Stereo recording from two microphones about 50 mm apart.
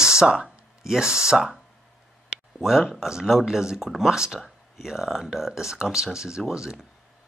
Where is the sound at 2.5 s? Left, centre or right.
Centre.